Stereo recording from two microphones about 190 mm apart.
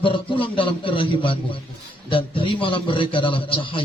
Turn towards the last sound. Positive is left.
turn(degrees=25)  # may be behind; listen again after turning